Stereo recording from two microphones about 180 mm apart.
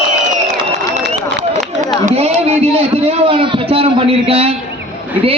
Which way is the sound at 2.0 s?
35° right (ahead or behind).